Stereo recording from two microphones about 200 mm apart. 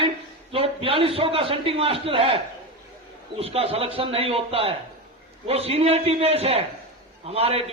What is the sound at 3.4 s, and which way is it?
A man's voice, 30° right (ahead or behind).